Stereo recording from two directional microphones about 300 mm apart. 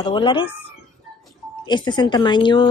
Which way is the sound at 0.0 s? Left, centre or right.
Centre.